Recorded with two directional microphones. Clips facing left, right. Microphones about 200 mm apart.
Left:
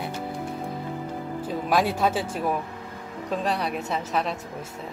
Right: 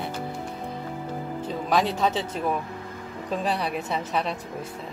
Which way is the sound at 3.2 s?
Centre (ahead or behind).